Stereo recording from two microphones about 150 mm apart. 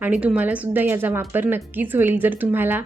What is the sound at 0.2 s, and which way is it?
Speech, 10° right (ahead or behind).